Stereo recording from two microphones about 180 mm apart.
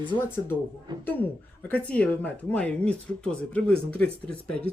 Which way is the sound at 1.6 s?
10° left (ahead or behind).